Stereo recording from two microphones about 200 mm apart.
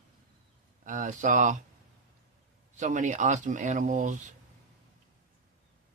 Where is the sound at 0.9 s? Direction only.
40° right (ahead or behind).